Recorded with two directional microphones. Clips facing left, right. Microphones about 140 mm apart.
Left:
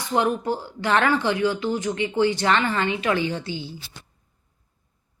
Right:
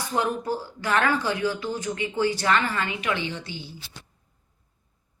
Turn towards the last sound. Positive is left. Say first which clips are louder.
# left 6 dB
turn(degrees=40)  # may be behind; listen again after turning